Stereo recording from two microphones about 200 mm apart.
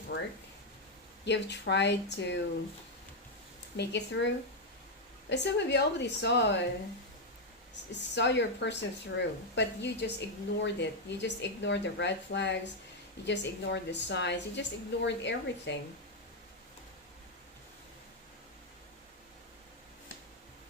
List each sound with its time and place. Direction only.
0.1 s a woman's voice: 60° left (ahead or behind)
3.8 s a woman's voice: 60° left (ahead or behind)
5.3 s a woman's voice: 60° left (ahead or behind)
7.9 s a woman's voice: 60° left (ahead or behind)